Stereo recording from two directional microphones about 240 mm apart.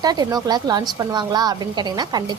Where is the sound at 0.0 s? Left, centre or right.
Centre.